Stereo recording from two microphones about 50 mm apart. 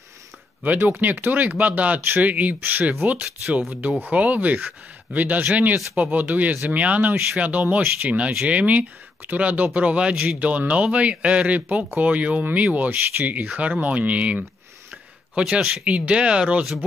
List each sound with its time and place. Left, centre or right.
0.7 s speech: right
2.0 s speech: right
2.2 s speech: right
14.9 s a sound: centre
15.8 s speech: right